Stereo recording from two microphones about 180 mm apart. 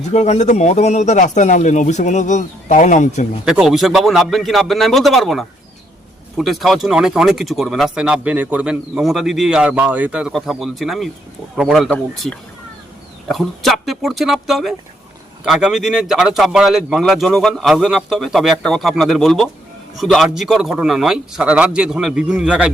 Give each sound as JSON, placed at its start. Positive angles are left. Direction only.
{"t": 0.1, "sound": "a man's voice", "side_deg": 40}
{"t": 3.4, "sound": "speech", "side_deg": 0}